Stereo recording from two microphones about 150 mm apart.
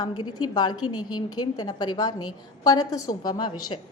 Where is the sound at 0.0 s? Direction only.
30° left (ahead or behind).